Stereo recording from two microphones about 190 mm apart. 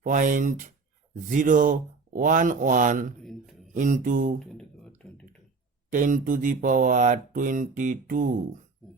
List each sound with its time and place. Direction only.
0.0 s mantra: 45° right (ahead or behind)
3.2 s speech: centre (ahead or behind)
3.8 s mantra: 45° right (ahead or behind)
4.4 s a sound: 5° left (ahead or behind)
5.9 s mantra: 45° right (ahead or behind)